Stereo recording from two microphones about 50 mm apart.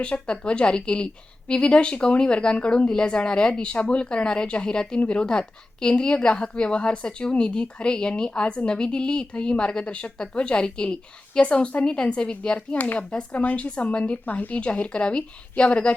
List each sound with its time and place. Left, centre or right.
0.0 s a woman's voice: left
12.8 s speech: left
13.1 s a woman's voice: left
13.4 s speech: left
13.7 s a woman's voice: left